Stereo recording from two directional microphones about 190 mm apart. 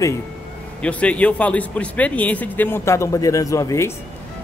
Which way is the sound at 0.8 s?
5° left (ahead or behind).